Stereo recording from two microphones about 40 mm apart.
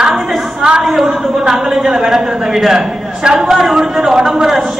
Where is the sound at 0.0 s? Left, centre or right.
Centre.